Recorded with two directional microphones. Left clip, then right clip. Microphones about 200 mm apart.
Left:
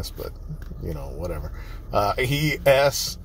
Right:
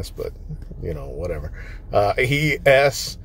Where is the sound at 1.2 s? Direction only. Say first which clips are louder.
Right 4 dB; 25° right (ahead or behind).